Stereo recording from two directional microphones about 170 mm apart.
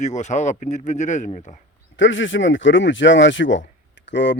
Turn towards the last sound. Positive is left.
turn(degrees=90)